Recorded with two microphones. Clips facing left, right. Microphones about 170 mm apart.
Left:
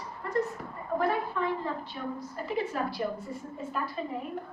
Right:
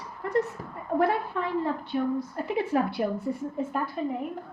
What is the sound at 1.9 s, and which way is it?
A woman's voice, 65° right (ahead or behind).